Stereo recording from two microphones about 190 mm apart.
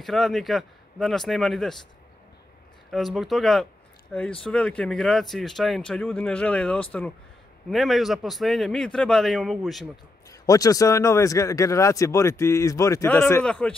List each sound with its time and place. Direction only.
0.0 s speech: centre (ahead or behind)
2.9 s speech: centre (ahead or behind)
10.3 s speech: 20° left (ahead or behind)